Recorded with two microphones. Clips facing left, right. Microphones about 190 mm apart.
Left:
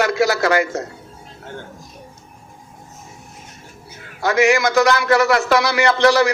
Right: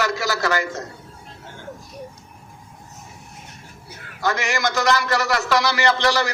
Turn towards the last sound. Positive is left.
turn(degrees=60)  # may be behind; listen again after turning